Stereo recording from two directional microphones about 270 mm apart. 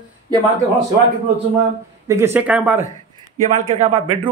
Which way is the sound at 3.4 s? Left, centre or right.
Right.